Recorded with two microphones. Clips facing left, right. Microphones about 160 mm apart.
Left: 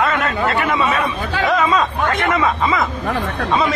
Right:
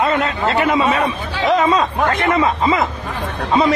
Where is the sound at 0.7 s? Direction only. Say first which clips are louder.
Right 2 dB; 25° right (ahead or behind).